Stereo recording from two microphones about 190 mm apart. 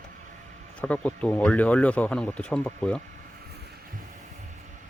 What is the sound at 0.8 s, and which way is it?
Speech, 5° left (ahead or behind).